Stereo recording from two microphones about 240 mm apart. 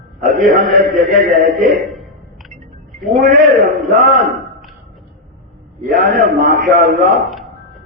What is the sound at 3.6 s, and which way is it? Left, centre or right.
Speech, right.